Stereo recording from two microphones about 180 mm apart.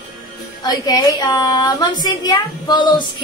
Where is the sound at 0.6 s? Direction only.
20° left (ahead or behind).